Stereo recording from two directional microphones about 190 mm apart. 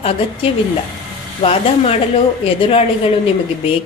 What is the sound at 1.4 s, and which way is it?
A woman's voice, 30° left (ahead or behind).